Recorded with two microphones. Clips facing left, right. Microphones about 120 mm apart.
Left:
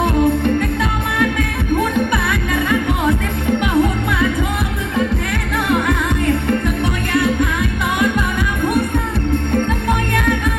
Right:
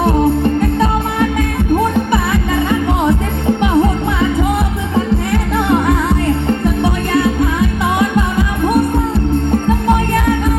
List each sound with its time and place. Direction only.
0.8 s music: 30° right (ahead or behind)